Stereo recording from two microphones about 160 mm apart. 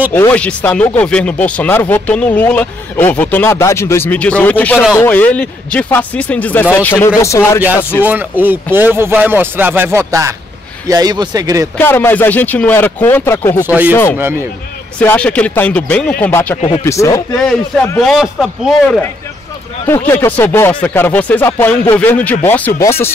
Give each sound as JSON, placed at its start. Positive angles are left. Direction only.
{"t": 0.1, "sound": "speech", "side_deg": 15}
{"t": 8.0, "sound": "speech", "side_deg": -10}
{"t": 11.7, "sound": "speech", "side_deg": 15}
{"t": 14.1, "sound": "speech", "side_deg": -15}
{"t": 15.0, "sound": "speech", "side_deg": 10}
{"t": 18.0, "sound": "a man's voice", "side_deg": 0}
{"t": 19.9, "sound": "speech", "side_deg": 15}